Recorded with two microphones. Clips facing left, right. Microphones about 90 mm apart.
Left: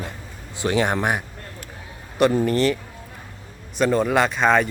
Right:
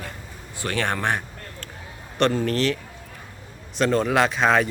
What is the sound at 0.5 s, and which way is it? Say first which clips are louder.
A man's voice: left 5 dB; 20° left (ahead or behind).